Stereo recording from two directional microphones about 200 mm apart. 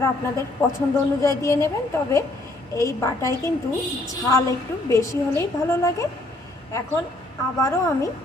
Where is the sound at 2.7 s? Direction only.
15° left (ahead or behind).